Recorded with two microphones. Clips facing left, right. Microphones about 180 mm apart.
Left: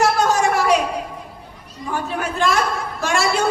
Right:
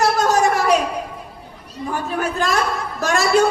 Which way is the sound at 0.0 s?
40° right (ahead or behind).